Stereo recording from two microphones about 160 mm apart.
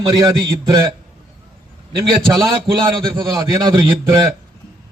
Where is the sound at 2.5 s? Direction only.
30° right (ahead or behind).